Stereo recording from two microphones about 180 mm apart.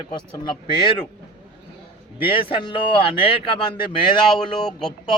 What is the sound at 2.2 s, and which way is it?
Speech, 30° left (ahead or behind).